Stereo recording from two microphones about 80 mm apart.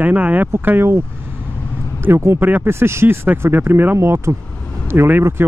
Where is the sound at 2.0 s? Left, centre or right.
Right.